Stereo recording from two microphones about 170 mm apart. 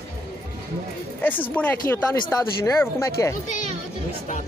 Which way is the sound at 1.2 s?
10° left (ahead or behind).